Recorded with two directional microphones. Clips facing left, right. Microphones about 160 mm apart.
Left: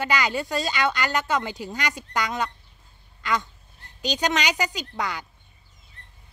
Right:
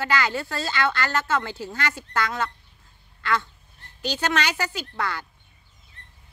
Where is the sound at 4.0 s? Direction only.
15° left (ahead or behind).